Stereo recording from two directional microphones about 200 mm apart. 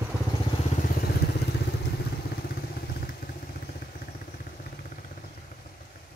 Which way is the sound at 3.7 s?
45° left (ahead or behind).